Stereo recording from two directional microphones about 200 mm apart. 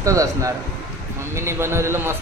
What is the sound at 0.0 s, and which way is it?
A man's voice, 15° right (ahead or behind).